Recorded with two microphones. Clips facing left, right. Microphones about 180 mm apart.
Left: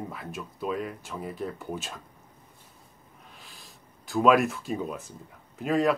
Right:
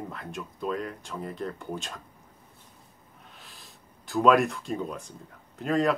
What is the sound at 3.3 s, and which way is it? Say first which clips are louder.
Speech: even; centre (ahead or behind).